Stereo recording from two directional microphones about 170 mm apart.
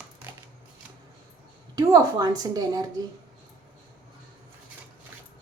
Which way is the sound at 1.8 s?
20° right (ahead or behind).